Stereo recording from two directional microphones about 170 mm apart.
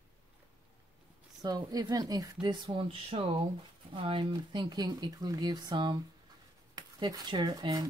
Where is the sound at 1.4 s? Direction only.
20° right (ahead or behind).